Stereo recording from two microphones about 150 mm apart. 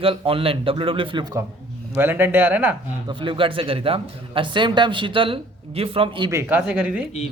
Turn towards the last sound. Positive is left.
turn(degrees=-5)  # may be behind; listen again after turning